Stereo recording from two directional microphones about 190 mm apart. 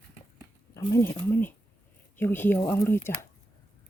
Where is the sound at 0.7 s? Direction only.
15° left (ahead or behind).